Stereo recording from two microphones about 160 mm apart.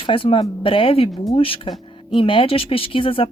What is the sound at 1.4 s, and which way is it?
Speech, 35° left (ahead or behind).